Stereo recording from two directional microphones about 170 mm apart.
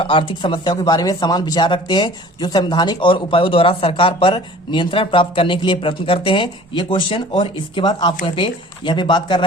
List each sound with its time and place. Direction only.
0.0 s speech: 30° left (ahead or behind)